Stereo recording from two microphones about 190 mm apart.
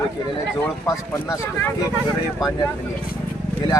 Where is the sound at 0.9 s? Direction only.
15° left (ahead or behind).